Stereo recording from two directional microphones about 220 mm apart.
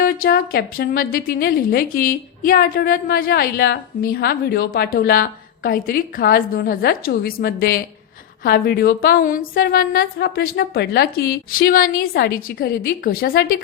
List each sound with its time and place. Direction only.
0.0 s a woman's voice: 40° left (ahead or behind)